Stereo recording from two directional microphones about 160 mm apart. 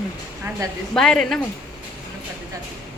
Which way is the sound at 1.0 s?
5° left (ahead or behind).